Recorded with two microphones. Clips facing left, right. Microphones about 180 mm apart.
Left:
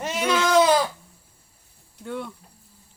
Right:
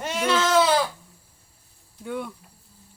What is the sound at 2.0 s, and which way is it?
Speech, 5° right (ahead or behind).